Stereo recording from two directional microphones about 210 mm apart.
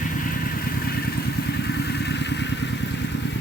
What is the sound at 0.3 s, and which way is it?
Vehicle, 45° left (ahead or behind).